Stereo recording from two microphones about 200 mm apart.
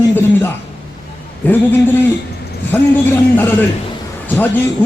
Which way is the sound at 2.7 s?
10° left (ahead or behind).